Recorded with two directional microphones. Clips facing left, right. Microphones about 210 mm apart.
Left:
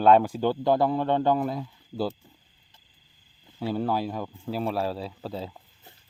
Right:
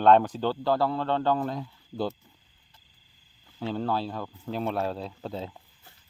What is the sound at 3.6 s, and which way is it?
Speech, 10° left (ahead or behind).